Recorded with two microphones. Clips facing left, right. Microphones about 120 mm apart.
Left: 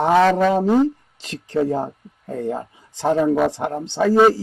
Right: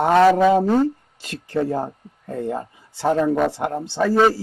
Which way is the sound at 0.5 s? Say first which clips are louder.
Left 1 dB; 10° left (ahead or behind).